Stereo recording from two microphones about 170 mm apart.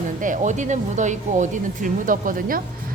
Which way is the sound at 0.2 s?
45° right (ahead or behind).